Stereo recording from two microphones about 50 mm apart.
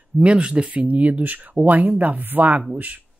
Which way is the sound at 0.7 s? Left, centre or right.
Right.